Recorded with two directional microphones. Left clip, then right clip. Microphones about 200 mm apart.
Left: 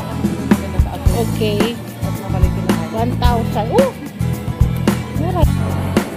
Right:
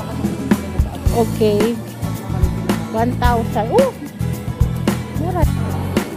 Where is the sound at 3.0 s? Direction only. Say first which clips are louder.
Right 5 dB; 15° right (ahead or behind).